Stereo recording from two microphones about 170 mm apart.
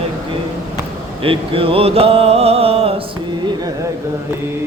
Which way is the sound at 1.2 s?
35° right (ahead or behind).